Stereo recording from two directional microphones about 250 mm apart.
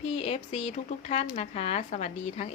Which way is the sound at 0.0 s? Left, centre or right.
Left.